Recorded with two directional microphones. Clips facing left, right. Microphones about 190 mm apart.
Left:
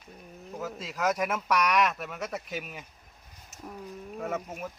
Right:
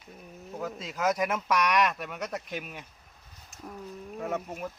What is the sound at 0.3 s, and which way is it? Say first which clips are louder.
Speech: right 1 dB; centre (ahead or behind).